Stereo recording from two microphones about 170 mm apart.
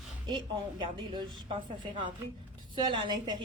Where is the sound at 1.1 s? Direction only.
30° right (ahead or behind).